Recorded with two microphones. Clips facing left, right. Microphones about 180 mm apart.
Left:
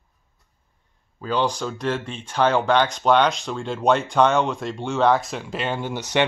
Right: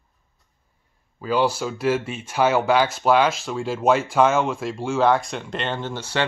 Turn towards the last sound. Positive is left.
turn(degrees=15)  # may be behind; listen again after turning